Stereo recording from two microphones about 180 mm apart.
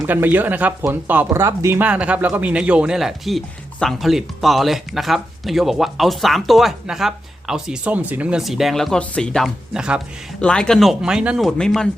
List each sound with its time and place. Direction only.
0.0 s speech: 10° right (ahead or behind)